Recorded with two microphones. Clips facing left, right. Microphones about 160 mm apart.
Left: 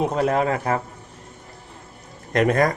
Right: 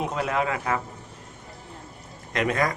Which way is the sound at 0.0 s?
40° left (ahead or behind).